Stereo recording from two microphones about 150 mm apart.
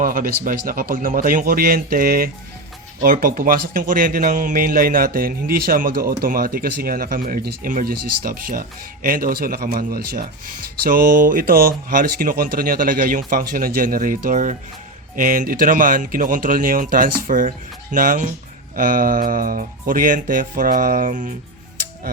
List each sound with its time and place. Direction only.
0.0 s speech: 70° right (ahead or behind)
10.8 s speech: 70° right (ahead or behind)